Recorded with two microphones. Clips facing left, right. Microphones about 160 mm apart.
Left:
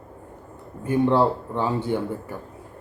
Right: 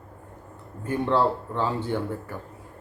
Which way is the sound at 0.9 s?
15° left (ahead or behind).